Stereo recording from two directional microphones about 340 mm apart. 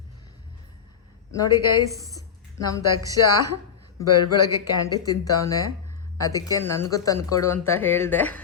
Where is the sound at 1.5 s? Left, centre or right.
Left.